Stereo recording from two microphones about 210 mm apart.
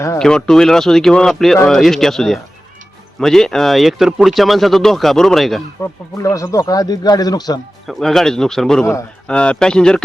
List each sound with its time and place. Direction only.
0.2 s speech: 5° left (ahead or behind)
5.8 s speech: 15° left (ahead or behind)
7.9 s speech: centre (ahead or behind)